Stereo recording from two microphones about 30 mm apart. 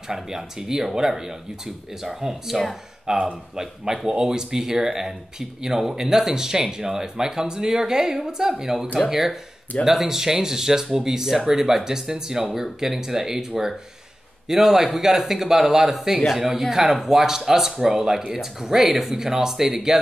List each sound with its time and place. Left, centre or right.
0.1 s speech: centre
2.0 s speech: centre
3.1 s speech: centre
14.5 s speech: centre